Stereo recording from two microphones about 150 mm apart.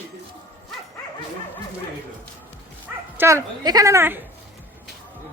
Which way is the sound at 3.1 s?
20° right (ahead or behind).